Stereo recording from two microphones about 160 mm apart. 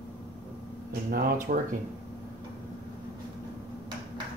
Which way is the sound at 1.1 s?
65° right (ahead or behind).